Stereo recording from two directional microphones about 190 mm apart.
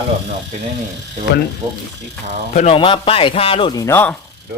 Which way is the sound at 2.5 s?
35° left (ahead or behind).